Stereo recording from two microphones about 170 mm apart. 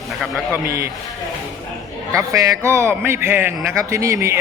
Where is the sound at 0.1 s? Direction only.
Centre (ahead or behind).